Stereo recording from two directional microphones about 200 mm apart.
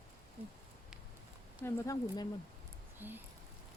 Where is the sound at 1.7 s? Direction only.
15° left (ahead or behind).